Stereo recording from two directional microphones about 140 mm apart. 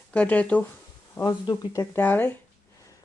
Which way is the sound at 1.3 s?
30° left (ahead or behind).